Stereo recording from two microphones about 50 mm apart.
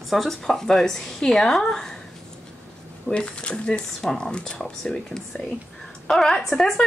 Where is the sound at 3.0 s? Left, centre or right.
Centre.